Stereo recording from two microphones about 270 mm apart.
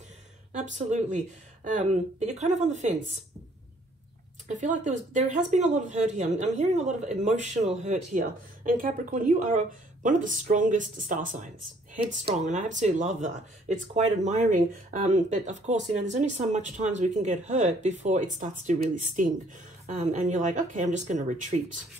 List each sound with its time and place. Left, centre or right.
0.6 s speech: right
4.5 s speech: right